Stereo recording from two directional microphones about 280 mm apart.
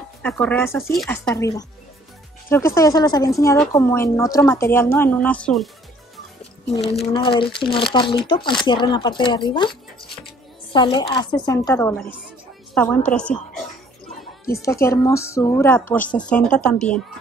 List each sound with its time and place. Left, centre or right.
0.2 s speech: centre
2.5 s speech: centre
6.4 s speech: left; by 13.4 s centre
14.5 s speech: centre